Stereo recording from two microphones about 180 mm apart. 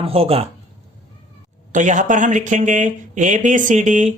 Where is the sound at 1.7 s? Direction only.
45° right (ahead or behind).